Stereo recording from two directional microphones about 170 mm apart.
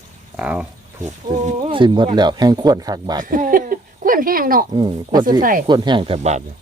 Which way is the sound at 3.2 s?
55° right (ahead or behind).